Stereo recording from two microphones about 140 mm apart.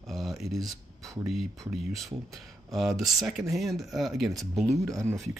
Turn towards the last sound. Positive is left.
turn(degrees=0)  # may be behind; listen again after turning